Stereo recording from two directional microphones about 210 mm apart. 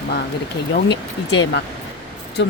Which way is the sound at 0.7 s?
55° left (ahead or behind).